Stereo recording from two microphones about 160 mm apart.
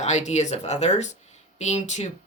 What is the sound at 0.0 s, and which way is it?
Speech, 45° left (ahead or behind).